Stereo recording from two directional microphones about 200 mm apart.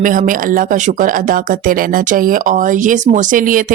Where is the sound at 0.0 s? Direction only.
40° right (ahead or behind).